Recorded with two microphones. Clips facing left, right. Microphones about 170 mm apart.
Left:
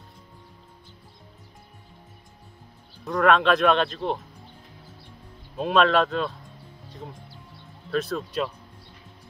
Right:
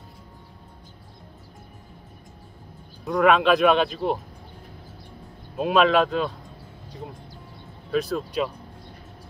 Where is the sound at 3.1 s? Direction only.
Centre (ahead or behind).